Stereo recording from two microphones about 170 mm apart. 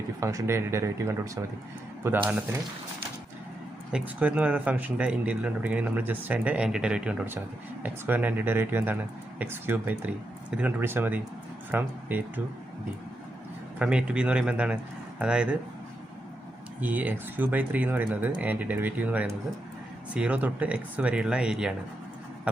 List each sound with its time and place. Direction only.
0.2 s speech: 20° right (ahead or behind)
3.9 s speech: 10° right (ahead or behind)
13.7 s speech: 5° right (ahead or behind)
16.8 s speech: 10° right (ahead or behind)